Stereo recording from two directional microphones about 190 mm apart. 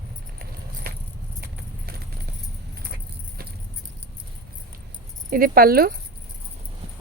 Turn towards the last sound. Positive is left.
turn(degrees=-50)  # may be behind; listen again after turning